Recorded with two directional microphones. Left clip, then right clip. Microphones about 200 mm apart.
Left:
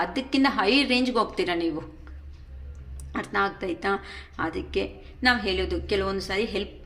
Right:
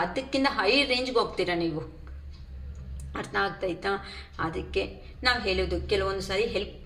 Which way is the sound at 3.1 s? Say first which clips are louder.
Left 3 dB; 45° left (ahead or behind).